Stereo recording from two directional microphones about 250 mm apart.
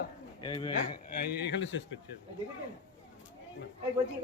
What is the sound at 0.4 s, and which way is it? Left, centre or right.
Speech, centre.